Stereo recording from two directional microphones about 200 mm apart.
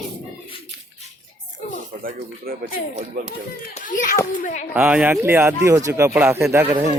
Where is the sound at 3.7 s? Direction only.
40° left (ahead or behind).